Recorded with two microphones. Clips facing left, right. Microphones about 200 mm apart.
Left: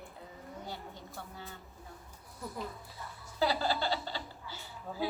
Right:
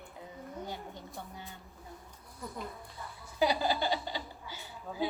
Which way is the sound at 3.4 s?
15° right (ahead or behind).